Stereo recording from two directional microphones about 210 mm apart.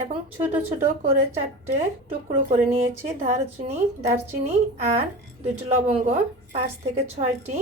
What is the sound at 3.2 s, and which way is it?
A woman's voice, 35° right (ahead or behind).